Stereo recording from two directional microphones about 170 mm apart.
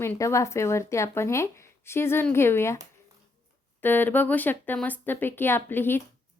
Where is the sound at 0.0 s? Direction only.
15° left (ahead or behind).